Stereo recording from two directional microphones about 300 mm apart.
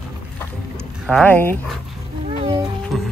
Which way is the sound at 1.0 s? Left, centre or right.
Centre.